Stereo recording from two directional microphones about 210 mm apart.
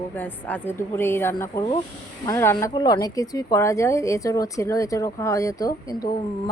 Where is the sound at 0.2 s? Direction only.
10° left (ahead or behind).